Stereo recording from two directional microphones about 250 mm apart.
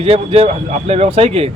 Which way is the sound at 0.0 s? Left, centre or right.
Right.